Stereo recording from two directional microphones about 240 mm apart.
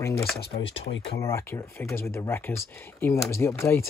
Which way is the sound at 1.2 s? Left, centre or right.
Centre.